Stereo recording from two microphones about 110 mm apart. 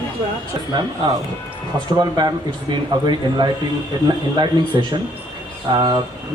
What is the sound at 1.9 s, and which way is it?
Speech, 40° right (ahead or behind).